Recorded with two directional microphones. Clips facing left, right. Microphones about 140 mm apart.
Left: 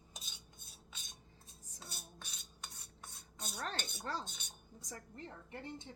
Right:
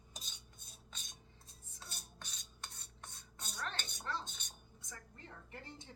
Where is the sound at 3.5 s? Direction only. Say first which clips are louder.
Left 2 dB; 40° left (ahead or behind).